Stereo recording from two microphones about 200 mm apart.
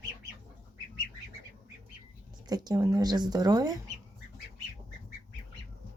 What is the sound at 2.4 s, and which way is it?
Speech, 20° right (ahead or behind).